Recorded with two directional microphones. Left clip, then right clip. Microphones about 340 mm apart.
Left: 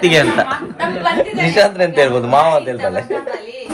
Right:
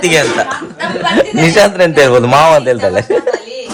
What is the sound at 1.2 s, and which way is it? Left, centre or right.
A man's voice, right.